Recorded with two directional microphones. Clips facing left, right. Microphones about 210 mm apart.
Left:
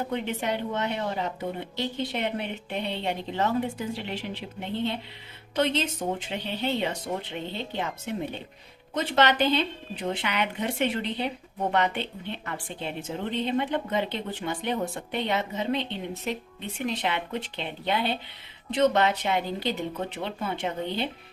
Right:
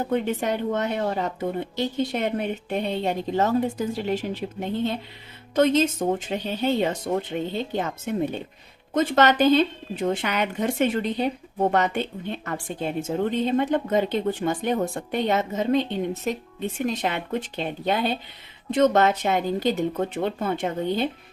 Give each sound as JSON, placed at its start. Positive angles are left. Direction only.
{"t": 0.1, "sound": "a woman's voice", "side_deg": -45}